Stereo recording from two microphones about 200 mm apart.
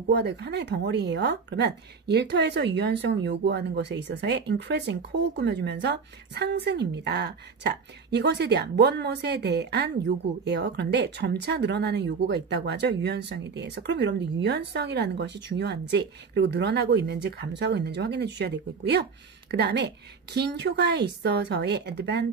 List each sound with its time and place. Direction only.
0.1 s speech: 55° right (ahead or behind)